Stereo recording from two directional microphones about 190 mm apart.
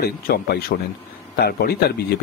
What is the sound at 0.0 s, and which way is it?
Speech, 55° left (ahead or behind).